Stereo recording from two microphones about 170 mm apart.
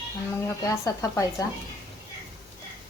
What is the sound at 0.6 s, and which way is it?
Speech, 20° left (ahead or behind).